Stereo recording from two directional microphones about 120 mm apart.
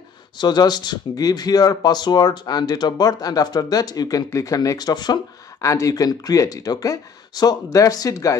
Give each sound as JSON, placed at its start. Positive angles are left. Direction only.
{"t": 0.4, "sound": "speech", "side_deg": 35}